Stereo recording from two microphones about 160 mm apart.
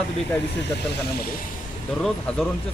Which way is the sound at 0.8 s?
90° left.